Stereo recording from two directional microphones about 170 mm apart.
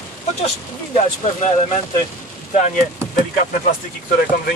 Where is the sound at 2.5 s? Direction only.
40° left (ahead or behind).